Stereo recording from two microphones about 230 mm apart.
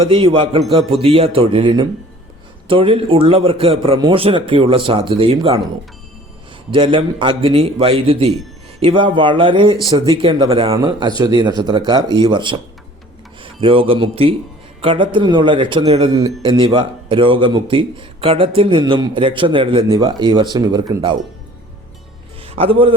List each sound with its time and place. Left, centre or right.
0.0 s a man's voice: right
6.7 s a man's voice: right
22.4 s a man's voice: right